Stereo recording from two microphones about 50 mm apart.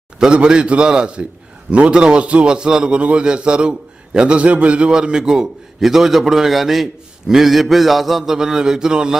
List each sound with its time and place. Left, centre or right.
0.2 s a man's voice: centre